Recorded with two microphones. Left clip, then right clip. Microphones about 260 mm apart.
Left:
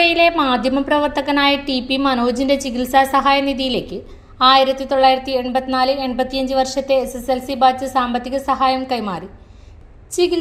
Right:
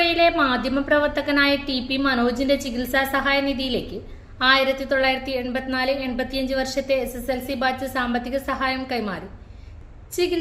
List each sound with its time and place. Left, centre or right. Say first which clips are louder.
0.0 s a woman's voice: left 4 dB; left